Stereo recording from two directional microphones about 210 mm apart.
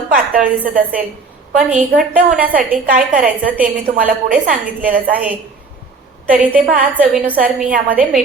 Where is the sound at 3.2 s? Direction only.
5° right (ahead or behind).